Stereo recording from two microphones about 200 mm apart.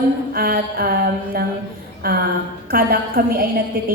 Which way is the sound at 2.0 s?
50° right (ahead or behind).